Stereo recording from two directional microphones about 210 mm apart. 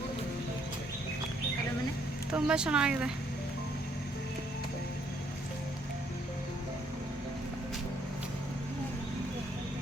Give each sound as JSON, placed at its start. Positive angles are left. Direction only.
{"t": 2.3, "sound": "speech", "side_deg": -5}